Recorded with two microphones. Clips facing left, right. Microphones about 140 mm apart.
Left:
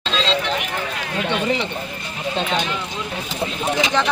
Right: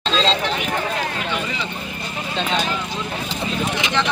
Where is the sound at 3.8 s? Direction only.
40° left (ahead or behind).